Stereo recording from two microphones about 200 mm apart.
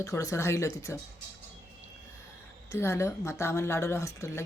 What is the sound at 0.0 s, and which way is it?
Speech, 15° left (ahead or behind).